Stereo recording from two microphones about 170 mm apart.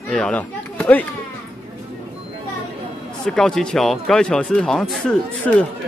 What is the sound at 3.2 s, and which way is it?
Speech, 5° left (ahead or behind).